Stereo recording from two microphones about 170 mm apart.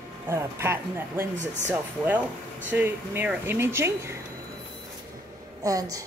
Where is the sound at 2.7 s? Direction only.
10° right (ahead or behind).